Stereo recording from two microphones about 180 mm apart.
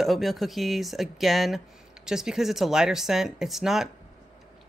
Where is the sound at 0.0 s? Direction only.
Centre (ahead or behind).